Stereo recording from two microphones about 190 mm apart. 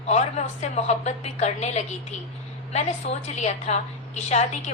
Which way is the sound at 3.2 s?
35° left (ahead or behind).